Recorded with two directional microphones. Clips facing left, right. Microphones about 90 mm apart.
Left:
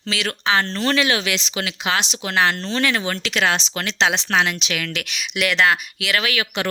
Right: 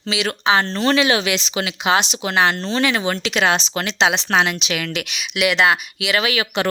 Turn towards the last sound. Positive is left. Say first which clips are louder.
# right 3 dB
turn(degrees=-25)  # may be behind; listen again after turning